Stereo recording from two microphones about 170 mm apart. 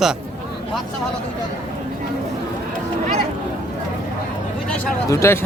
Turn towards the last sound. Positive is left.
turn(degrees=15)  # may be behind; listen again after turning